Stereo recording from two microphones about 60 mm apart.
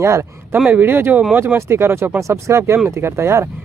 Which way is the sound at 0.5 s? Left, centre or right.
Right.